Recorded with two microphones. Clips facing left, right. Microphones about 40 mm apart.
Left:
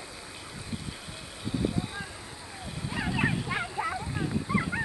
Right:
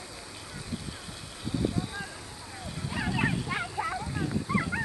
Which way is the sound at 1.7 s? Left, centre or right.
Centre.